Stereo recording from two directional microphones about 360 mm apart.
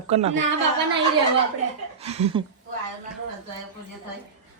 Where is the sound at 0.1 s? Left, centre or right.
Centre.